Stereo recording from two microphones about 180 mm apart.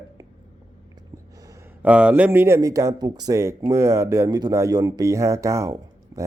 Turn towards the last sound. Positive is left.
turn(degrees=-20)  # may be behind; listen again after turning